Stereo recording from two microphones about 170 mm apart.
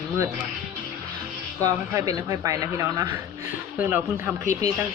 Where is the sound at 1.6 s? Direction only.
20° right (ahead or behind).